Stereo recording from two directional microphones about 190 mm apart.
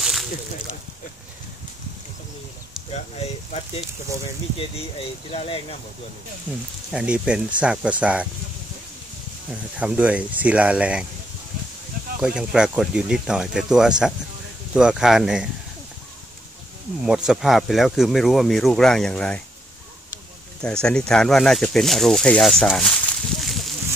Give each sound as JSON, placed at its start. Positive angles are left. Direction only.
{"t": 0.0, "sound": "a sound", "side_deg": 0}
{"t": 2.9, "sound": "speech", "side_deg": 35}
{"t": 5.3, "sound": "speech", "side_deg": 30}
{"t": 6.9, "sound": "speech", "side_deg": -5}
{"t": 9.8, "sound": "speech", "side_deg": -5}
{"t": 12.2, "sound": "speech", "side_deg": -5}
{"t": 17.0, "sound": "speech", "side_deg": -5}
{"t": 20.6, "sound": "speech", "side_deg": 5}
{"t": 23.4, "sound": "a sound", "side_deg": 0}